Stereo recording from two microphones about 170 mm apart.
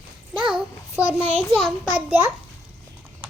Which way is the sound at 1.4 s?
Centre (ahead or behind).